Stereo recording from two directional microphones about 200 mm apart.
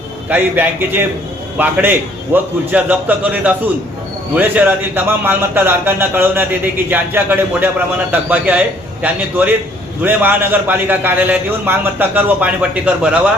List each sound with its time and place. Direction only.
0.3 s a man's voice: 10° right (ahead or behind)